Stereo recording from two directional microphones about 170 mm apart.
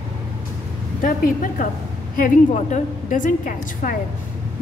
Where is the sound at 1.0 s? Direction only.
50° left (ahead or behind).